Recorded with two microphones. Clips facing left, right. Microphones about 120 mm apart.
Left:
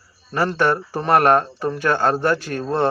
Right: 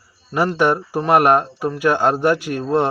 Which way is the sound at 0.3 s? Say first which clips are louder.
Right 2 dB; 15° right (ahead or behind).